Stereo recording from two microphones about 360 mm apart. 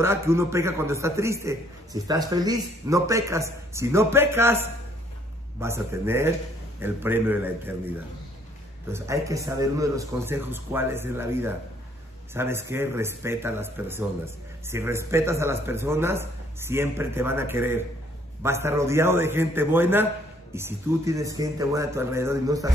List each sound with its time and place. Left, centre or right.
0.0 s a man's voice: centre
8.9 s speech: centre